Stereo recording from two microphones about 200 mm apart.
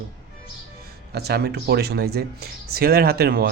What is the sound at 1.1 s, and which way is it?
Speech, 55° right (ahead or behind).